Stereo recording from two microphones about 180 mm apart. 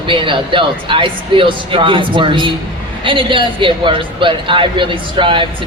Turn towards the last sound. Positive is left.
turn(degrees=-30)  # may be behind; listen again after turning